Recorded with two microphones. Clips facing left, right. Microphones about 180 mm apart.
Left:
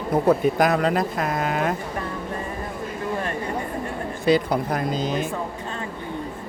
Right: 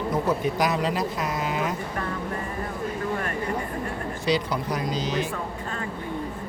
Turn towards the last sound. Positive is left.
turn(degrees=50)  # may be behind; listen again after turning